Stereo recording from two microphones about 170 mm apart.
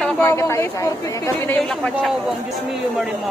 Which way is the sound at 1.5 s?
5° left (ahead or behind).